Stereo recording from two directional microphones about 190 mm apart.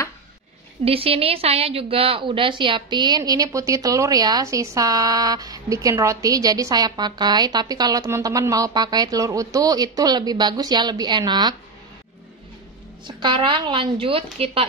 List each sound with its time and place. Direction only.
0.8 s a woman's voice: 30° right (ahead or behind)
13.0 s a woman's voice: 25° right (ahead or behind)